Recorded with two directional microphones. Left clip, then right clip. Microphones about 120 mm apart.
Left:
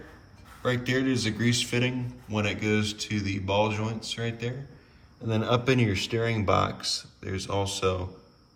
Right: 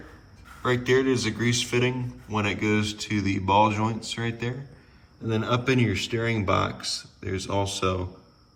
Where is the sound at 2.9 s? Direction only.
15° left (ahead or behind).